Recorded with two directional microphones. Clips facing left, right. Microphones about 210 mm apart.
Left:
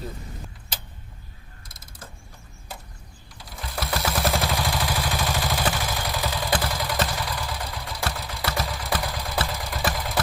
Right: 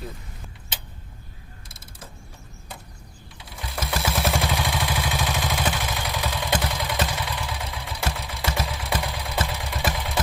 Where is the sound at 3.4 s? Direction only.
Centre (ahead or behind).